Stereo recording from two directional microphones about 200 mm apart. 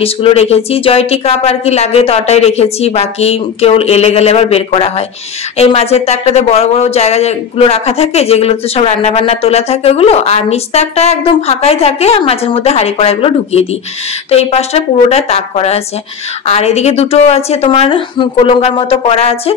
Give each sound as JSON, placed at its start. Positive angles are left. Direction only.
{"t": 0.0, "sound": "a woman's voice", "side_deg": 30}